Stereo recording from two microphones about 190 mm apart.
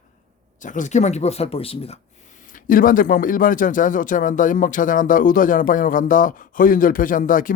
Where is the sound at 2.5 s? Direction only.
45° left (ahead or behind).